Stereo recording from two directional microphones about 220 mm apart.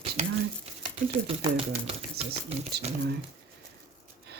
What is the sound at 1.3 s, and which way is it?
Speech, 25° right (ahead or behind).